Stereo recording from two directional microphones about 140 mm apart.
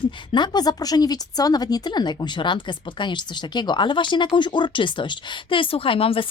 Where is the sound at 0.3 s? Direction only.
30° left (ahead or behind).